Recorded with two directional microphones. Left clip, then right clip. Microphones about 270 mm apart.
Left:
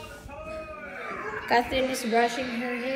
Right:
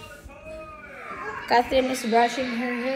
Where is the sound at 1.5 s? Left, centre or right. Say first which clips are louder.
Right 4 dB; centre.